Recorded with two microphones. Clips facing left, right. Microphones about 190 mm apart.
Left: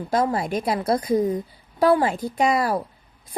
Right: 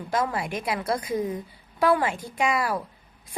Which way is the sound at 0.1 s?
35° left (ahead or behind).